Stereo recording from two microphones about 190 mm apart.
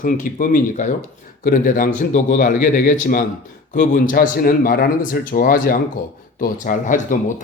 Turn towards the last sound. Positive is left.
turn(degrees=45)  # may be behind; listen again after turning